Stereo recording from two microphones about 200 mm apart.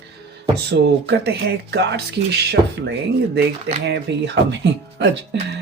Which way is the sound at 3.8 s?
55° right (ahead or behind).